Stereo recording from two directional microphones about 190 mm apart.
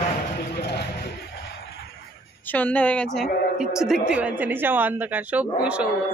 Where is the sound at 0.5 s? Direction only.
60° left (ahead or behind).